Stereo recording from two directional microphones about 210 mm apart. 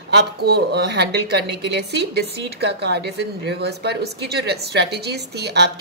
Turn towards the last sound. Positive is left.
turn(degrees=-50)  # may be behind; listen again after turning